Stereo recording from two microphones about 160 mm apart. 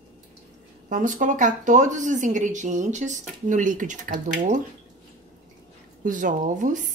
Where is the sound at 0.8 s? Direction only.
55° right (ahead or behind).